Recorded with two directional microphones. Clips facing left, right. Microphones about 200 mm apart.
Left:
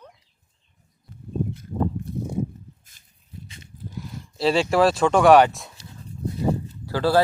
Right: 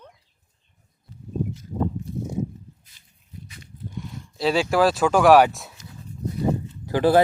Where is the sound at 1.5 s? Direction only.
55° left (ahead or behind).